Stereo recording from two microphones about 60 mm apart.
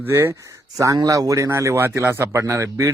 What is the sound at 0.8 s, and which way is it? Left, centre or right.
Speech, right.